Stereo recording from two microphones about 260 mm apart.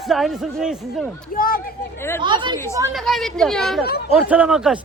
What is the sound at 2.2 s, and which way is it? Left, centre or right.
Speech, centre.